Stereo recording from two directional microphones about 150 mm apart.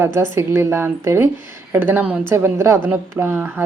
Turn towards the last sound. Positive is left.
turn(degrees=-15)  # may be behind; listen again after turning